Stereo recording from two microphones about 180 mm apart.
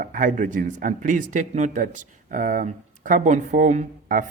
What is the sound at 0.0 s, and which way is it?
Speech, 45° right (ahead or behind).